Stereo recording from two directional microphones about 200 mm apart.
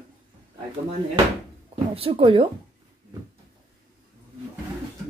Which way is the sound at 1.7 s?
30° right (ahead or behind).